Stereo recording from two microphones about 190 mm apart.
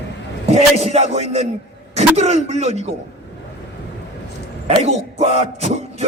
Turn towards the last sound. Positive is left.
turn(degrees=-35)  # may be behind; listen again after turning